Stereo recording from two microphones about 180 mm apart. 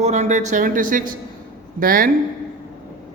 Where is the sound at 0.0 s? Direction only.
40° right (ahead or behind).